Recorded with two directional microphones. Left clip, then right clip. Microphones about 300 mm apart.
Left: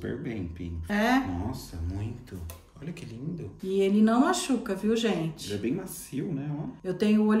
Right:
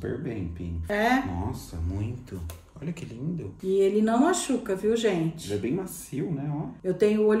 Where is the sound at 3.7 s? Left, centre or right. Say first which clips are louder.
Right 2 dB; centre.